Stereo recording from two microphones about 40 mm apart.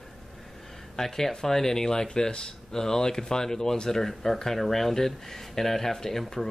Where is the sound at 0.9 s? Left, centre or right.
Centre.